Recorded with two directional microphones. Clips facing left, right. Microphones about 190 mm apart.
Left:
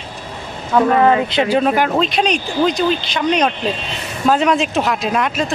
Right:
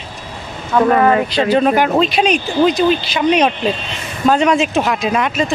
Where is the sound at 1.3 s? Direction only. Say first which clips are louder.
Right 2 dB; 15° left (ahead or behind).